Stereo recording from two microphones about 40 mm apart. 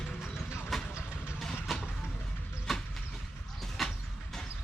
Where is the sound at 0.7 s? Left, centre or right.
Centre.